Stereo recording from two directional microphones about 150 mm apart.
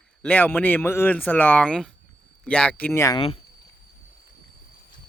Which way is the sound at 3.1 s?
40° left (ahead or behind).